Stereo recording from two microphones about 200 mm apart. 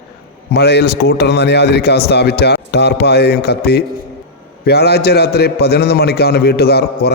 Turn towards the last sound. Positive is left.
turn(degrees=55)  # may be behind; listen again after turning